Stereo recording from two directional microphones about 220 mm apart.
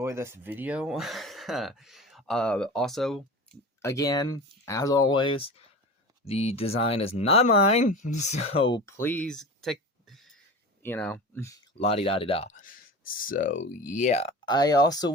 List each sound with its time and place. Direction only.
0.0 s speech: 10° right (ahead or behind)
3.8 s speech: 15° left (ahead or behind)
9.0 s a sound: 5° left (ahead or behind)
10.8 s speech: 10° left (ahead or behind)
11.8 s speech: 25° left (ahead or behind)
14.4 s speech: 20° left (ahead or behind)